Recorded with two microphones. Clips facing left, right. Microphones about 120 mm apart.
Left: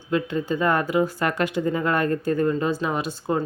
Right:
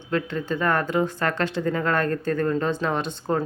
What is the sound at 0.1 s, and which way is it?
A woman's voice, 15° left (ahead or behind).